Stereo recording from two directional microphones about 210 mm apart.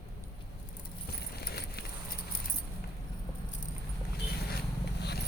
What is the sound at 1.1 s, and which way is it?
Keys jangling, 50° left (ahead or behind).